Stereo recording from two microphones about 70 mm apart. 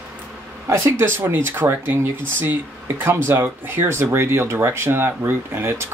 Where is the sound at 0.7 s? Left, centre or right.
Right.